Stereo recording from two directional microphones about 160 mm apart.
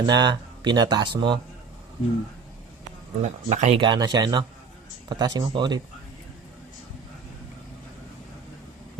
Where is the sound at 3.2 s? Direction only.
45° right (ahead or behind).